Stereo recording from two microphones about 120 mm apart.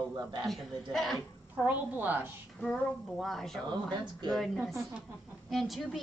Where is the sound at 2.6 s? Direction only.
5° left (ahead or behind).